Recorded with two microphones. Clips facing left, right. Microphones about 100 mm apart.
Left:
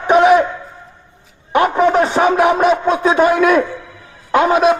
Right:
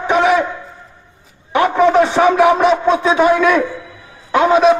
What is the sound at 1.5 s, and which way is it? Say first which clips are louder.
Speech: right 1 dB; 40° left (ahead or behind).